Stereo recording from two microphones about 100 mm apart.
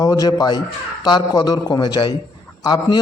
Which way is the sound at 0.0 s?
35° left (ahead or behind).